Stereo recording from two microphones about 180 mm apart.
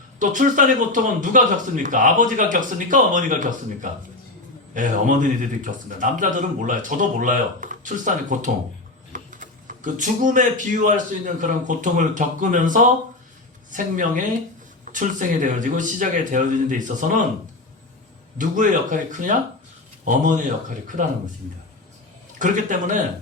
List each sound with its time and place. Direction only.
0.2 s a man's voice: 45° right (ahead or behind)
18.3 s a man's voice: 45° right (ahead or behind)
22.4 s a man's voice: 45° right (ahead or behind)